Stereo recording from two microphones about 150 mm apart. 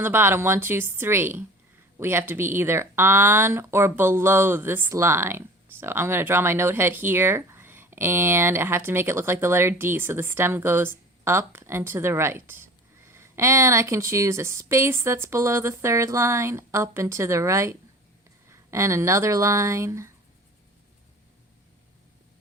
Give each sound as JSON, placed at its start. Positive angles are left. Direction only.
{"t": 0.0, "sound": "speech", "side_deg": -15}